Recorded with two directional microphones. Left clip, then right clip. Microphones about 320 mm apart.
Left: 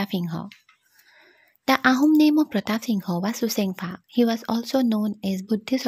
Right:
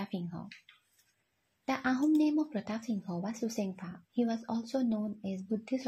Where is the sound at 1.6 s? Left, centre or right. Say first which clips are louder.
Left 12 dB; left.